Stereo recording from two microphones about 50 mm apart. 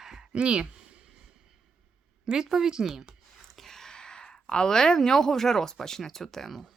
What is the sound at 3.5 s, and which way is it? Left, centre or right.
Speech, centre.